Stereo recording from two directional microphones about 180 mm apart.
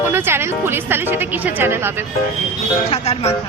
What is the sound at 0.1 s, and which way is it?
Speech, 15° right (ahead or behind).